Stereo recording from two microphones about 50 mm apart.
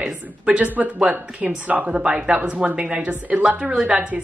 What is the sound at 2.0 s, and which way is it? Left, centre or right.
Speech, centre.